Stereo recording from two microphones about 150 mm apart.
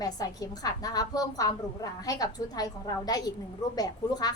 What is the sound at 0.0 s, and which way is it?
A woman's voice, 25° left (ahead or behind).